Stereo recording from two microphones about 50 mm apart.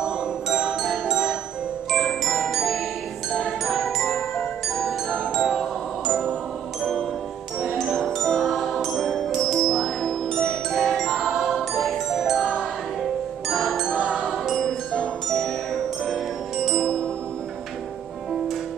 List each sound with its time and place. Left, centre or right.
0.0 s music: centre
1.9 s glockenspiel: centre
2.5 s music: centre
13.5 s music: centre
14.0 s music: centre
14.6 s music: centre